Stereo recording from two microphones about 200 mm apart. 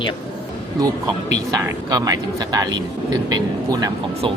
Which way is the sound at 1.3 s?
20° right (ahead or behind).